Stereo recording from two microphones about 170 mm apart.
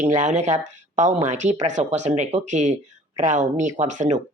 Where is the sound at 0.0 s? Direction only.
45° right (ahead or behind).